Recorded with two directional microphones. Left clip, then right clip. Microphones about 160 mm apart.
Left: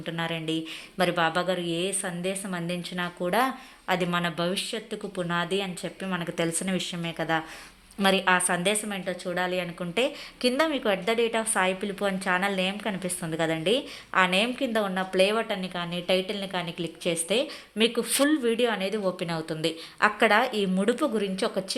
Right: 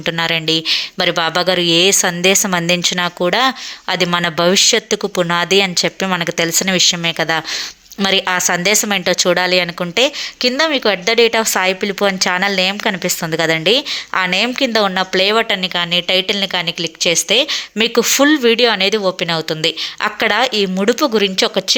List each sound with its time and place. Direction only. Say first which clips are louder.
0.0 s speech: right 15 dB; 30° right (ahead or behind)
3.3 s speech: right 11 dB; 25° right (ahead or behind)
6.2 s a woman's voice: right 13 dB; 25° right (ahead or behind)
8.8 s speech: right 17 dB; 45° right (ahead or behind)
9.9 s a woman's voice: right 11 dB; 20° right (ahead or behind)